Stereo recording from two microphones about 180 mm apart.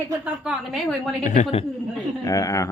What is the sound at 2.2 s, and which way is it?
Speech, 20° left (ahead or behind).